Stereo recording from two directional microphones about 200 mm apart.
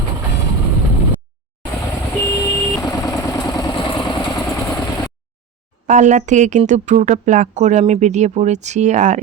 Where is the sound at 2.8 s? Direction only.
20° left (ahead or behind).